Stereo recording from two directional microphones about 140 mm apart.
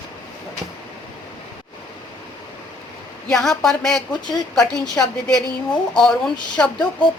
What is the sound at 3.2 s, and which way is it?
Speech, centre (ahead or behind).